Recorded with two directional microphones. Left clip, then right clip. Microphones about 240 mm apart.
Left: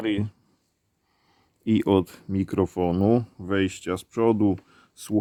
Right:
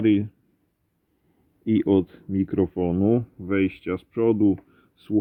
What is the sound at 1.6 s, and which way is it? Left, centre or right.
Speech, centre.